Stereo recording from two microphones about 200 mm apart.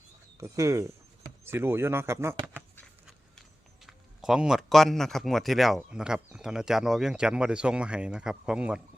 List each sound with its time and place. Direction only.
0.3 s speech: 15° right (ahead or behind)
3.8 s speech: centre (ahead or behind)